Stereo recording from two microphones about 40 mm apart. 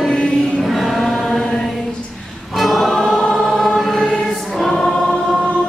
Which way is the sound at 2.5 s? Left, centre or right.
Centre.